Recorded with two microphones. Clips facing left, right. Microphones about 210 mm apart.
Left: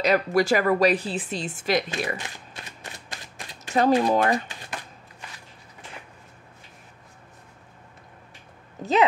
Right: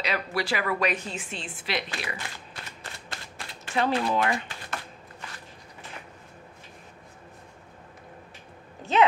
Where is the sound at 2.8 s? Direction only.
15° left (ahead or behind).